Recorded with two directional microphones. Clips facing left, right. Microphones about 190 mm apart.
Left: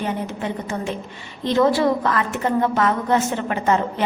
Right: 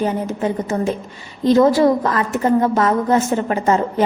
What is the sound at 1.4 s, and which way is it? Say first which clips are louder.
A woman's voice: right 5 dB; 40° right (ahead or behind).